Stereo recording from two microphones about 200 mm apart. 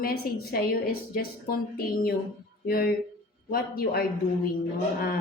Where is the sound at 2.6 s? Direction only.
50° left (ahead or behind).